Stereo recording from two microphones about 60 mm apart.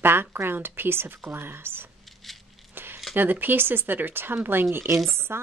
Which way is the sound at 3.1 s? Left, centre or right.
Right.